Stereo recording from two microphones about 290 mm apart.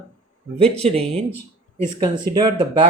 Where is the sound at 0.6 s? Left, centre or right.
Centre.